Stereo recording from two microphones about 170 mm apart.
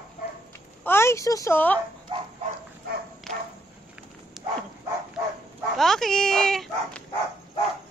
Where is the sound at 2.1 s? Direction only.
30° right (ahead or behind).